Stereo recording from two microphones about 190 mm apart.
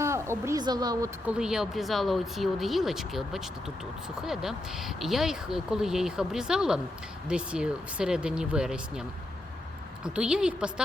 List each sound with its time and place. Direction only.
0.0 s speech: 15° right (ahead or behind)
1.3 s speech: 5° right (ahead or behind)